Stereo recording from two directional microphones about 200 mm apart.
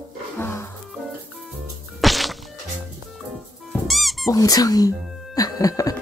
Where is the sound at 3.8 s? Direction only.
Centre (ahead or behind).